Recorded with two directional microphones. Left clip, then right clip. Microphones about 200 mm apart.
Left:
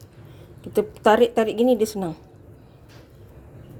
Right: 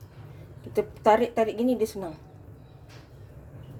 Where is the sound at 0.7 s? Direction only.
45° left (ahead or behind).